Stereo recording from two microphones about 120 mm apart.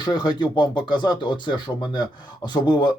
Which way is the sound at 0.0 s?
35° left (ahead or behind).